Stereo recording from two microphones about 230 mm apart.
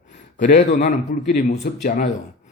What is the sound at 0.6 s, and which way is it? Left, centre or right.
Speech, left.